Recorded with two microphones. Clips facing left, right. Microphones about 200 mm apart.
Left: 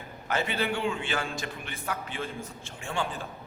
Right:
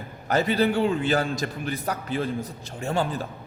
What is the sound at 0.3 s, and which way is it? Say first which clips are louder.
A man's voice: right 7 dB; 40° right (ahead or behind).